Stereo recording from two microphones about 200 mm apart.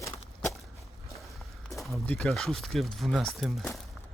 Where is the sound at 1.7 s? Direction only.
Centre (ahead or behind).